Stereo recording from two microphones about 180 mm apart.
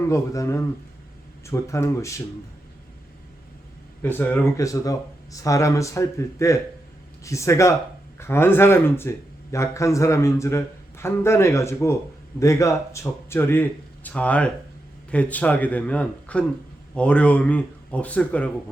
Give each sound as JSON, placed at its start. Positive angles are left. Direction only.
{"t": 0.1, "sound": "speech", "side_deg": 15}
{"t": 4.0, "sound": "speech", "side_deg": 10}